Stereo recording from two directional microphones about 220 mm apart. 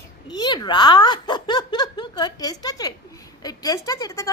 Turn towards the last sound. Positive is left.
turn(degrees=15)  # may be behind; listen again after turning